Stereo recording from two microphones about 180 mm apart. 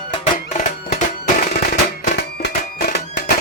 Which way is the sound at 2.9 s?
60° left (ahead or behind).